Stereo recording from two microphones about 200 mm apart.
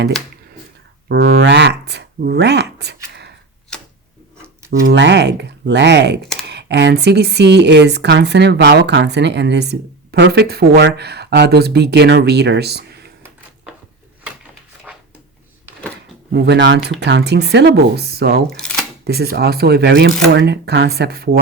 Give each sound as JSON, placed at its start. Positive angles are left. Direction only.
{"t": 1.0, "sound": "speech", "side_deg": -50}
{"t": 4.9, "sound": "speech", "side_deg": -60}
{"t": 16.3, "sound": "speech", "side_deg": -60}
{"t": 18.5, "sound": "a sound", "side_deg": 5}
{"t": 19.0, "sound": "speech", "side_deg": -50}